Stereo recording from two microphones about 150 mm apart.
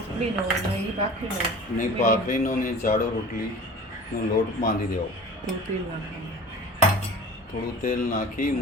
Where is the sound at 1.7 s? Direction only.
60° left (ahead or behind).